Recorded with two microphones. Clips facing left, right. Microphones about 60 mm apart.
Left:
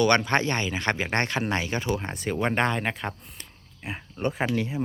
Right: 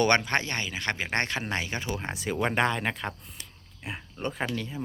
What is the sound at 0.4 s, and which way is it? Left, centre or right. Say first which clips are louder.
Speech: left 5 dB; centre.